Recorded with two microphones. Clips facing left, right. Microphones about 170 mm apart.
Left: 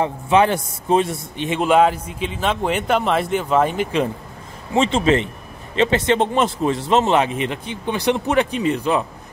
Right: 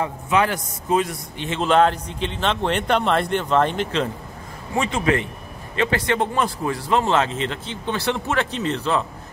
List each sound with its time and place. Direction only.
0.0 s a man's voice: 25° left (ahead or behind)
1.5 s speech: 10° left (ahead or behind)
4.7 s a man's voice: 25° left (ahead or behind)